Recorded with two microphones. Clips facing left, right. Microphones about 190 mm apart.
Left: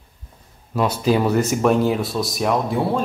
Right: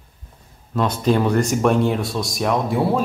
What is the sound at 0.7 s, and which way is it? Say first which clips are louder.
Speech: even; 10° left (ahead or behind).